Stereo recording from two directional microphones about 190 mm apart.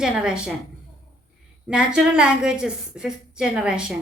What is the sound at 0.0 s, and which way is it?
Speech, 5° right (ahead or behind).